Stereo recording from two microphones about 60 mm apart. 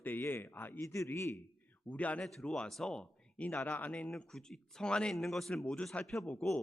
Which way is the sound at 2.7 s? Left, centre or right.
Centre.